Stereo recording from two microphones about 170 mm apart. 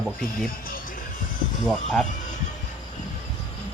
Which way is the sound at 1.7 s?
5° left (ahead or behind).